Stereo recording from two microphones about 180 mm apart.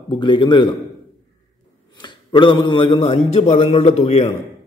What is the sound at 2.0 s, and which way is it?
Speech, 25° left (ahead or behind).